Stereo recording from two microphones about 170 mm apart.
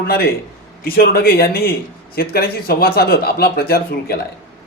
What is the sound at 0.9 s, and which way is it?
A man's voice, 60° left (ahead or behind).